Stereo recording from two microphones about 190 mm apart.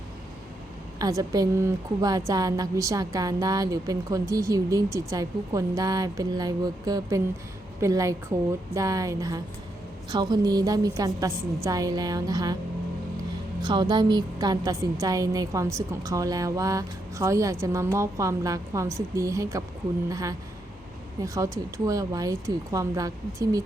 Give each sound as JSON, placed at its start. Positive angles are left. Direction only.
{"t": 0.9, "sound": "a woman's voice", "side_deg": -20}
{"t": 13.6, "sound": "a woman's voice", "side_deg": -20}